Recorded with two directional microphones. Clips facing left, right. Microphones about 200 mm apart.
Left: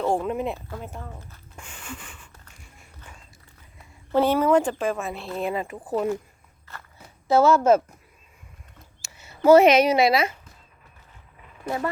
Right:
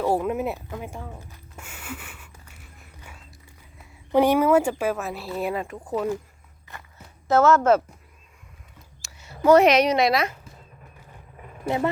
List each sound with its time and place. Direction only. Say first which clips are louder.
0.0 s speech: right 1 dB; 10° right (ahead or behind)
0.7 s a sound: right 2 dB; 10° right (ahead or behind)
4.1 s speech: right 1 dB; 15° right (ahead or behind); by 6.1 s 5° left (ahead or behind)
6.7 s walk: right 1 dB; 15° right (ahead or behind)
7.3 s speech: even; 10° left (ahead or behind)
9.0 s a sound: even; centre (ahead or behind)
9.5 s speech: left 1 dB; centre (ahead or behind)